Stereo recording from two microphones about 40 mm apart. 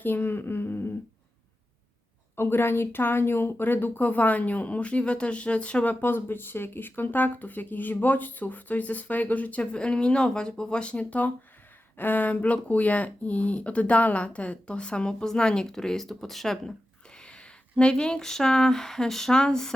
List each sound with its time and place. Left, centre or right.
0.0 s speech: left
2.3 s speech: left
3.7 s speech: left
5.8 s speech: left
6.1 s speech: left
11.9 s speech: left; by 16.7 s centre
17.2 s speech: left